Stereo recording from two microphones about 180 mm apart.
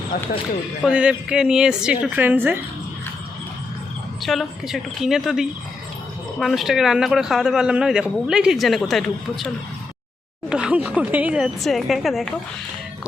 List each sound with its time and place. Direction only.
0.1 s speech: 50° left (ahead or behind)
0.9 s a man's voice: 5° right (ahead or behind)
4.2 s a man's voice: centre (ahead or behind)
10.5 s a man's voice: 5° right (ahead or behind)